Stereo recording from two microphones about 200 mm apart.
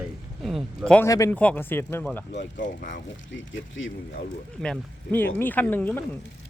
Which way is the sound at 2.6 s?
40° left (ahead or behind).